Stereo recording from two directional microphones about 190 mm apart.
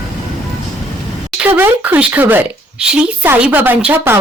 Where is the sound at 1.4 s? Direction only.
10° right (ahead or behind).